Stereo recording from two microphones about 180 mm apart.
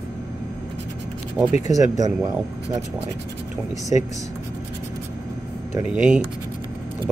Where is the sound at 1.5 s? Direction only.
40° left (ahead or behind).